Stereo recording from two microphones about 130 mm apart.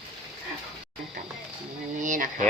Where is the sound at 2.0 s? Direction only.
90° right.